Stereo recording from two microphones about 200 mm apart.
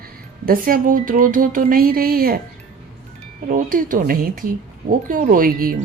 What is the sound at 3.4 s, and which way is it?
Speech, 45° right (ahead or behind).